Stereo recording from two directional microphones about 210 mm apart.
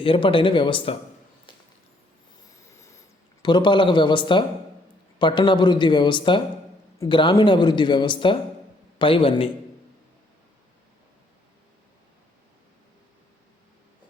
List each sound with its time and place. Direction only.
0.0 s speech: 25° left (ahead or behind)
2.4 s a sound: 15° left (ahead or behind)
3.4 s speech: 20° left (ahead or behind)